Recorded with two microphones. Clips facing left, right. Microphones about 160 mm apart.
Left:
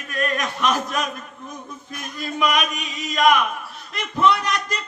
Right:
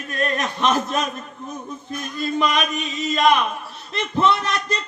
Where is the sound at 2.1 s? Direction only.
30° right (ahead or behind).